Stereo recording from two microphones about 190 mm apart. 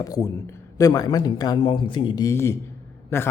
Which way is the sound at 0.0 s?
20° left (ahead or behind).